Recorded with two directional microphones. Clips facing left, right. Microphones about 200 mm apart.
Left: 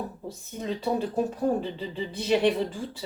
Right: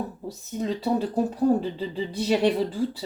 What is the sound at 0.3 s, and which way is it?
Speech, 35° right (ahead or behind).